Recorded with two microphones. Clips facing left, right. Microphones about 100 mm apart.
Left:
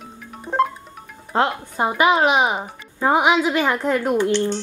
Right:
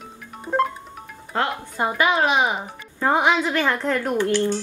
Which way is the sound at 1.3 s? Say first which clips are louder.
Left 4 dB; 20° left (ahead or behind).